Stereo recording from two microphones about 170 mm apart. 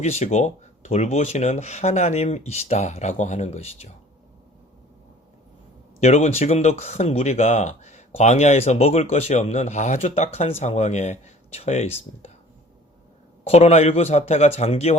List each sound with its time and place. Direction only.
0.0 s speech: 40° left (ahead or behind)
6.0 s speech: 40° left (ahead or behind)
13.5 s speech: 40° left (ahead or behind)